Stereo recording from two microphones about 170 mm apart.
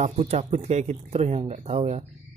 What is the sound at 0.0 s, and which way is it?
Speech, 40° right (ahead or behind).